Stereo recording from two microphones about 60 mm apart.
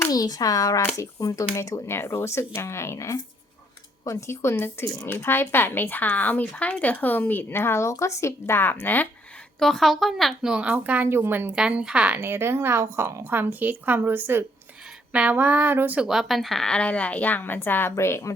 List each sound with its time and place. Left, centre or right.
0.1 s speech: left
4.3 s a woman's voice: left
9.6 s speech: centre
10.4 s a sound: centre
11.0 s a woman's voice: right
11.8 s speech: centre
12.2 s speech: right
13.3 s a woman's voice: right
15.3 s a sound: right
16.0 s speech: centre
16.7 s a woman's voice: left
17.9 s speech: left